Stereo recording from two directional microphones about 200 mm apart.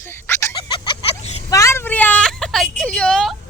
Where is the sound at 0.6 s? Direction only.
25° left (ahead or behind).